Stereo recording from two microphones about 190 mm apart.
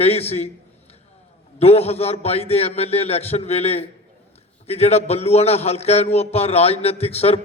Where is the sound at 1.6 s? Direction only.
35° left (ahead or behind).